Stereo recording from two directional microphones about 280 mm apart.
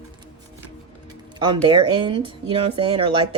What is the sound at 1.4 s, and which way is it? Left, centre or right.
Speech, centre.